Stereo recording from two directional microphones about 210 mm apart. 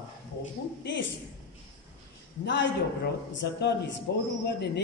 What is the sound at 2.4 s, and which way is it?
A man's voice, 60° left (ahead or behind).